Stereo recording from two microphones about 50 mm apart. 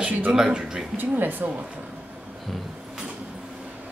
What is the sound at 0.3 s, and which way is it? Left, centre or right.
Speech, centre.